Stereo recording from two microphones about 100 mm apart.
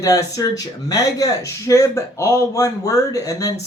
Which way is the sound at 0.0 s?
35° left (ahead or behind).